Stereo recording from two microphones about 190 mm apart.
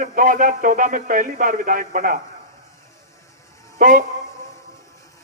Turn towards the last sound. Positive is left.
turn(degrees=-45)  # may be behind; listen again after turning